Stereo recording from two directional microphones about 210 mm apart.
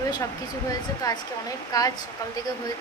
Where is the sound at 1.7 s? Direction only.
15° left (ahead or behind).